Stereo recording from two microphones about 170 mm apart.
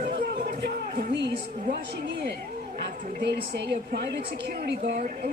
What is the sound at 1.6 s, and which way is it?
A woman's voice, 65° right (ahead or behind).